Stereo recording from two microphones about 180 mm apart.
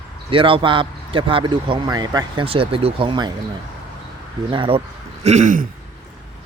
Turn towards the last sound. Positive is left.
turn(degrees=-45)  # may be behind; listen again after turning